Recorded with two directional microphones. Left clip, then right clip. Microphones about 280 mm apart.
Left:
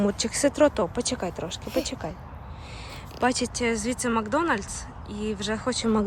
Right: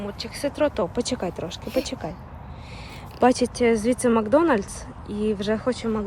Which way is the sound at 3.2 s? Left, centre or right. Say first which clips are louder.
Right 6 dB; centre.